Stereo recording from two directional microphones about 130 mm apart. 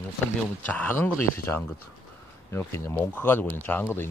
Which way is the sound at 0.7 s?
15° left (ahead or behind).